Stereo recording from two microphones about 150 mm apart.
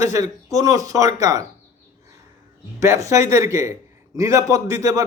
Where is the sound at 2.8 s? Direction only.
20° right (ahead or behind).